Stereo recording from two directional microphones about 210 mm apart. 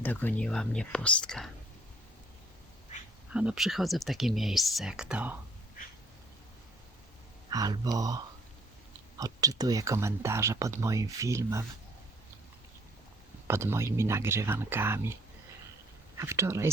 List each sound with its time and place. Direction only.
0.0 s speech: 10° left (ahead or behind)
3.3 s speech: 5° right (ahead or behind)
7.5 s speech: 20° right (ahead or behind)
13.5 s speech: 10° right (ahead or behind)
16.1 s speech: 15° right (ahead or behind)